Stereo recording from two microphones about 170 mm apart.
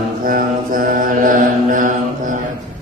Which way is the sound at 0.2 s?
55° right (ahead or behind).